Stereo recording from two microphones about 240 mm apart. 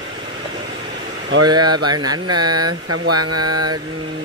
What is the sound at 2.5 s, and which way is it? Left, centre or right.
Mantra, right.